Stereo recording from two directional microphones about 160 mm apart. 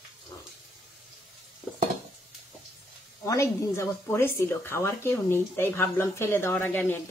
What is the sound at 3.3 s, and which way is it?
A woman's voice, 20° left (ahead or behind).